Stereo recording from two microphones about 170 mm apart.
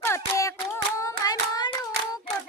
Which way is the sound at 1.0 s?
20° left (ahead or behind).